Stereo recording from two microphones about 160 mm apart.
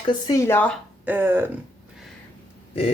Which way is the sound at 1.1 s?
10° right (ahead or behind).